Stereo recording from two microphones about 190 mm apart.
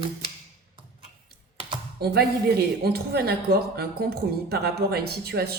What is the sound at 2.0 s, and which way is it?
A woman's voice, 55° right (ahead or behind).